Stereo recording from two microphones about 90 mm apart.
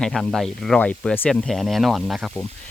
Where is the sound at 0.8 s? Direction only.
15° left (ahead or behind).